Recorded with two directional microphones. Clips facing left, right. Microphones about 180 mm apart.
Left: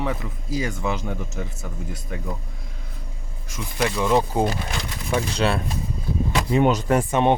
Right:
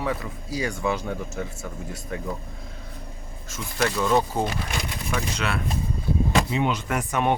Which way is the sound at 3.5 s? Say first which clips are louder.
Left 1 dB; 15° left (ahead or behind).